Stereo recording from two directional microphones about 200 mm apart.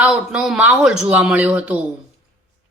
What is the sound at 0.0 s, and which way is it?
Speech, 5° right (ahead or behind).